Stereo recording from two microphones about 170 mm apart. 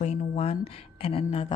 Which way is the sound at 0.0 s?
40° left (ahead or behind).